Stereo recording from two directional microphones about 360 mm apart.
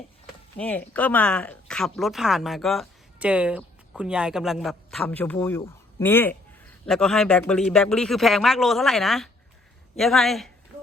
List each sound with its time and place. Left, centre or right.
0.5 s speech: centre